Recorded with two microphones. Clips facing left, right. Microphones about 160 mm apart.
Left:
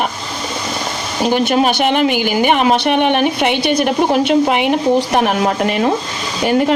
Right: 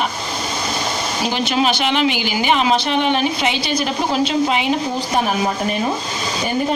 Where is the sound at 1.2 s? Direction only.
55° left (ahead or behind).